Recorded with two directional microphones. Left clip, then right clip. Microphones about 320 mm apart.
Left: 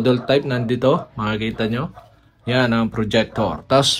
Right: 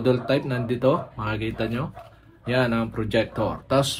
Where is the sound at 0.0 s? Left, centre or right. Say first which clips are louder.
Left 5 dB; left.